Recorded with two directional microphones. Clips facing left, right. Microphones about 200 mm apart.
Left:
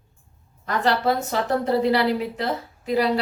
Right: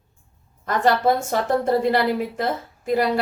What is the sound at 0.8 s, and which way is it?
A woman's voice, 50° right (ahead or behind).